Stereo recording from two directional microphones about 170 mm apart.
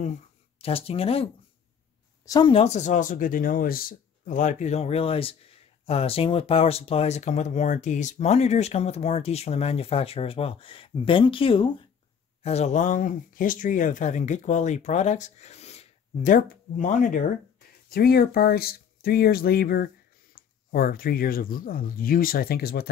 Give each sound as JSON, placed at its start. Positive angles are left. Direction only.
{"t": 0.6, "sound": "speech", "side_deg": 35}
{"t": 2.2, "sound": "speech", "side_deg": 20}
{"t": 2.5, "sound": "speech", "side_deg": 40}
{"t": 17.8, "sound": "speech", "side_deg": 65}